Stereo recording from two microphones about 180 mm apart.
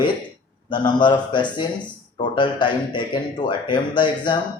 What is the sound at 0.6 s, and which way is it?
Speech, 25° left (ahead or behind).